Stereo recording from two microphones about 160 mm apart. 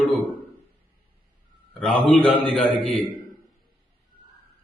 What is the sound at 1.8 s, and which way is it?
A man's voice, 5° left (ahead or behind).